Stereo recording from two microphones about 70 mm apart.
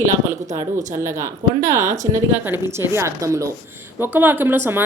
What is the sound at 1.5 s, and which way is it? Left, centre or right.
Speech, right.